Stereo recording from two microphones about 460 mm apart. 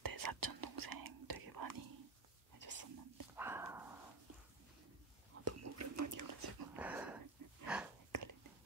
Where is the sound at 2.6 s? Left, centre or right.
Right.